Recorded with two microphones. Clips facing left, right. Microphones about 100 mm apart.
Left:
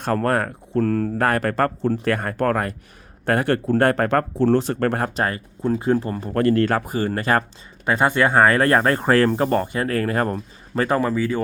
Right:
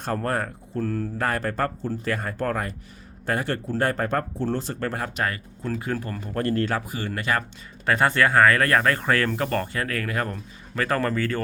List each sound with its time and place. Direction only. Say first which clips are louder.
0.0 s speech: left 6 dB; 70° left (ahead or behind); by 5.1 s 55° left (ahead or behind)
5.1 s speech: left 4 dB; 30° left (ahead or behind)
6.3 s speech: left 7 dB; 85° left
6.7 s speech: left 6 dB; 50° left (ahead or behind)
7.9 s speech: left 2 dB; 15° left (ahead or behind); by 10.8 s 35° left (ahead or behind)
10.8 s speech: left 3 dB; 15° left (ahead or behind)